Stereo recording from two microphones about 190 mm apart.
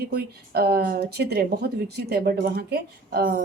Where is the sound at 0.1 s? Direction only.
55° right (ahead or behind).